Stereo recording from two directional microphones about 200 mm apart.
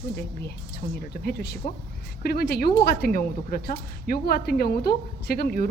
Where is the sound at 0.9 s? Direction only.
50° left (ahead or behind).